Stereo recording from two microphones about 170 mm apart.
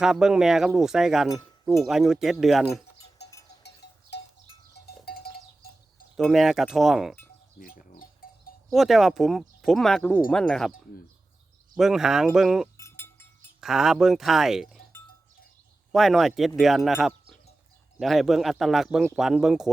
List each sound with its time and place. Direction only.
0.0 s speech: 5° right (ahead or behind)
4.1 s livestock: 75° left (ahead or behind)
5.0 s cowbell: 65° left (ahead or behind)
6.1 s speech: centre (ahead or behind)
7.6 s livestock: 55° left (ahead or behind)
8.7 s speech: centre (ahead or behind)
11.8 s speech: centre (ahead or behind)
12.7 s chink: 15° left (ahead or behind)
13.6 s speech: centre (ahead or behind)
15.9 s speech: centre (ahead or behind)